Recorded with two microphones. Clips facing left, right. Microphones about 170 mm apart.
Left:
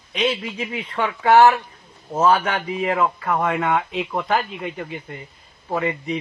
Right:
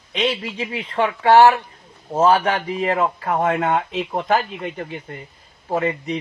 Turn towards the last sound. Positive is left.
turn(degrees=-40)  # may be behind; listen again after turning